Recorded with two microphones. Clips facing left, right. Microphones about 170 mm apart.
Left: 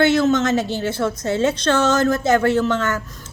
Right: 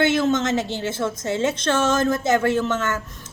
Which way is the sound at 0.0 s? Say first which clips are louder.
Left 3 dB; 20° right (ahead or behind).